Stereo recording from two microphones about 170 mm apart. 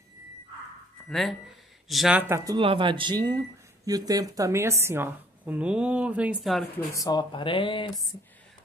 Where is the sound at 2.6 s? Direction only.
30° right (ahead or behind); by 6.6 s 5° right (ahead or behind).